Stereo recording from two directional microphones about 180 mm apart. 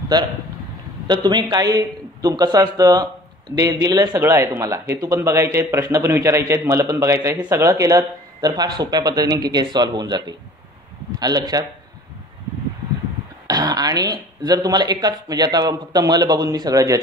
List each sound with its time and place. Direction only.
0.1 s a man's voice: 20° right (ahead or behind)
13.5 s a man's voice: 20° right (ahead or behind)